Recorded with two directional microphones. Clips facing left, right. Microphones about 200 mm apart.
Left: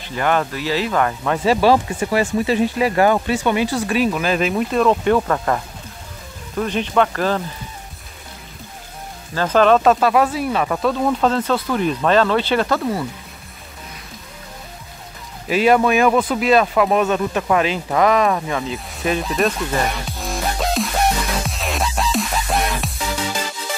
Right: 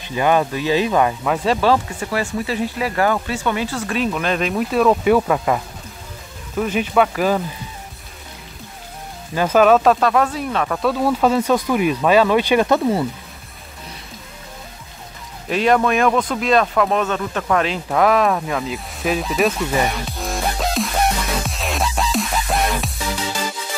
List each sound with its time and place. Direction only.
0.0 s speech: 15° right (ahead or behind)
1.2 s speech: centre (ahead or behind)
9.3 s speech: 10° right (ahead or behind); by 10.9 s 5° left (ahead or behind)
10.9 s speech: 5° right (ahead or behind); by 13.0 s 20° right (ahead or behind)
15.4 s speech: 5° left (ahead or behind)
21.5 s music: centre (ahead or behind)